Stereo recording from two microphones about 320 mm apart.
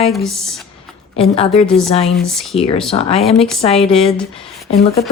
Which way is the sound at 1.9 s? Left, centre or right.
Centre.